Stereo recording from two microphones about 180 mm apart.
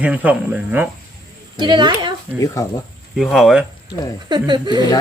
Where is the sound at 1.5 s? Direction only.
25° right (ahead or behind).